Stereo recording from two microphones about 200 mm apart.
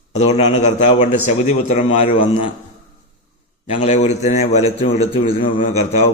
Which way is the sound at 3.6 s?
35° left (ahead or behind).